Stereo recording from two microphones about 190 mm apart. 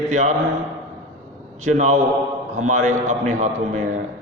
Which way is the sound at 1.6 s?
40° right (ahead or behind).